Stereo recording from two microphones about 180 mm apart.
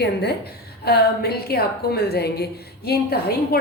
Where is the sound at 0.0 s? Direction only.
65° left (ahead or behind).